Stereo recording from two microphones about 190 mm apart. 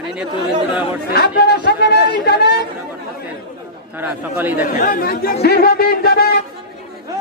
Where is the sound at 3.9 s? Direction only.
10° right (ahead or behind).